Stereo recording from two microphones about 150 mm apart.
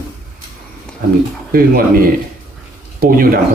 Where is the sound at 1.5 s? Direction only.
75° right (ahead or behind).